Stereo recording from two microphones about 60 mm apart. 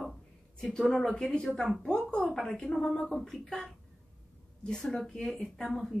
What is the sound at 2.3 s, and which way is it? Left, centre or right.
A woman's voice, centre.